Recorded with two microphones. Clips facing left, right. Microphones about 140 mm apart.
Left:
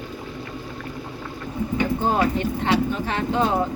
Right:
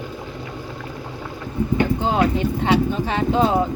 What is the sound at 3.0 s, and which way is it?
Speech, 20° right (ahead or behind).